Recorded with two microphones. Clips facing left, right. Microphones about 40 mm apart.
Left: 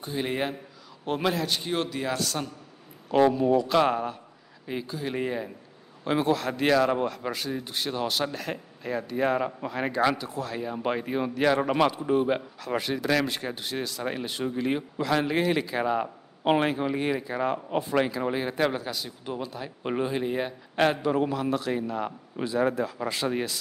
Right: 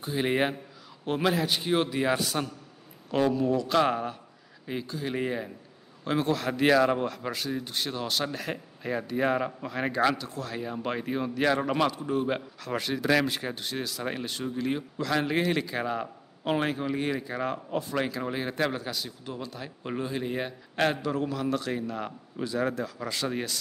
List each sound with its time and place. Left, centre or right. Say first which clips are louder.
0.0 s a man's voice: right 2 dB; centre
0.3 s a man's voice: right 4 dB; centre
1.0 s a man's voice: even; centre
3.3 s a man's voice: left 2 dB; centre
6.4 s speech: even; centre
10.1 s a man's voice: left 2 dB; centre
12.3 s speech: left 3 dB; centre
14.2 s a man's voice: left 2 dB; centre
17.6 s speech: left 4 dB; left
18.3 s a man's voice: left 3 dB; centre
19.8 s speech: left 4 dB; left
20.2 s a man's voice: left 3 dB; centre